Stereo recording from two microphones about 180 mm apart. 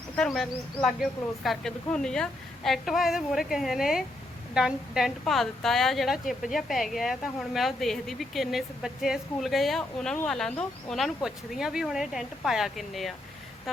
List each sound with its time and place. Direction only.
0.2 s a woman's voice: centre (ahead or behind)